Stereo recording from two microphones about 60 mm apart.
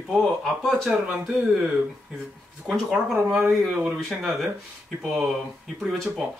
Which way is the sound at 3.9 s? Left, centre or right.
Centre.